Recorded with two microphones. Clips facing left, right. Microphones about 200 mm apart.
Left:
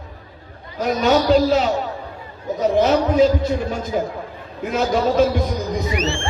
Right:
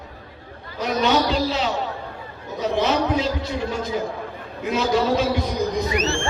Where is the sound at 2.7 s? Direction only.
45° left (ahead or behind).